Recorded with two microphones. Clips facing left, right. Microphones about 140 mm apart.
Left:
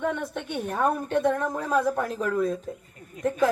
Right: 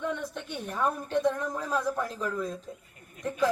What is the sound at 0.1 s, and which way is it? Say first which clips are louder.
A woman's voice: left 4 dB; 65° left (ahead or behind).